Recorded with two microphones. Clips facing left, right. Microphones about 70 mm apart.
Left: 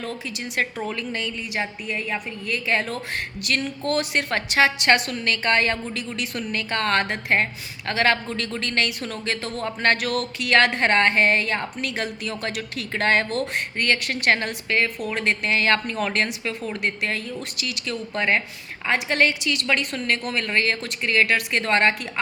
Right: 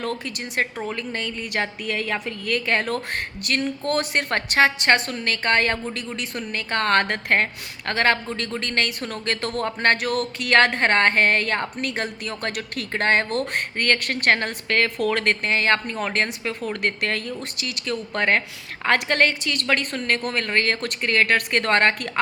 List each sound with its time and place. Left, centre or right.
0.9 s a woman's voice: right
1.5 s a woman's voice: right
2.5 s a woman's voice: right
3.4 s a woman's voice: right
14.8 s speech: right
15.4 s a woman's voice: right
16.6 s a woman's voice: right
17.6 s a woman's voice: right